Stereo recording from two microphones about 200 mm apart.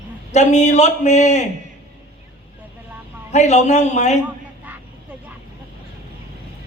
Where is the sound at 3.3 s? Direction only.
35° left (ahead or behind).